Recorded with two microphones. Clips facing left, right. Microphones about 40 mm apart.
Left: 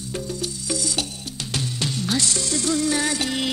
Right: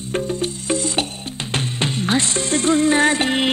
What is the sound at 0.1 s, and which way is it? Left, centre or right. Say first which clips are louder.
Music: right 7 dB; right.